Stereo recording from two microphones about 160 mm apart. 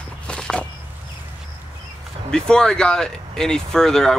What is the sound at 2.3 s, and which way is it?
Speech, 5° left (ahead or behind).